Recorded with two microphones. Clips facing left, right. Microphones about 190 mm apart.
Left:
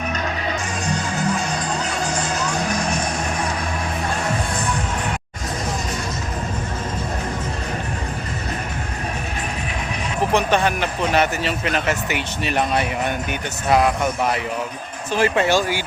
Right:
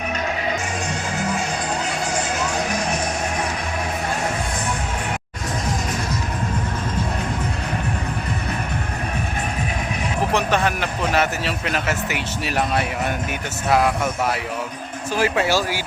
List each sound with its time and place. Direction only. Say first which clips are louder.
10.3 s a man's voice: left 3 dB; centre (ahead or behind)
15.1 s speech: left 2 dB; 5° right (ahead or behind)